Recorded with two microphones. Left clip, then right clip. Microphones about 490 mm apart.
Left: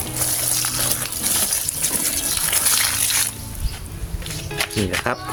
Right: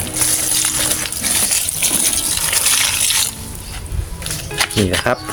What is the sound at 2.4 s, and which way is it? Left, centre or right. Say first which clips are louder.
Water: right 4 dB; left.